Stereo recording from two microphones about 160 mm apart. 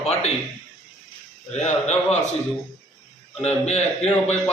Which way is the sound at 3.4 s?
45° left (ahead or behind).